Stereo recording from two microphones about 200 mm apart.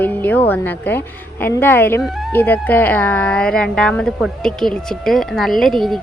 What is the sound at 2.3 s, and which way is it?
Speech, 10° left (ahead or behind).